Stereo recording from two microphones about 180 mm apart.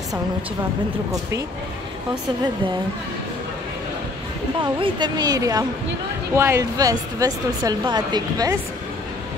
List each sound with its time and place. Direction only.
4.6 s a woman's voice: 30° right (ahead or behind)